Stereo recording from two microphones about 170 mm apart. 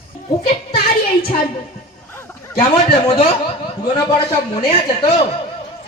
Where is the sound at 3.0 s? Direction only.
35° left (ahead or behind).